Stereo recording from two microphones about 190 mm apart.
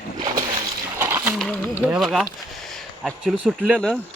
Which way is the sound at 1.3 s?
Centre (ahead or behind).